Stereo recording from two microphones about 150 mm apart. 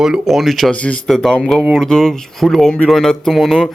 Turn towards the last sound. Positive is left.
turn(degrees=0)  # may be behind; listen again after turning